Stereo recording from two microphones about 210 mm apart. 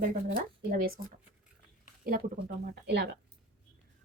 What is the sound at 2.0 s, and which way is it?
A woman's voice, 40° right (ahead or behind).